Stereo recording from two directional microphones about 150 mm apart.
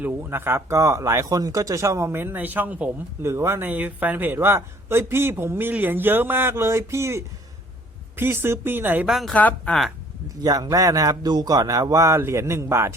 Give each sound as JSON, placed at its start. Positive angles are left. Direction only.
{"t": 0.0, "sound": "speech", "side_deg": -15}
{"t": 9.1, "sound": "speech", "side_deg": 5}
{"t": 10.4, "sound": "speech", "side_deg": -25}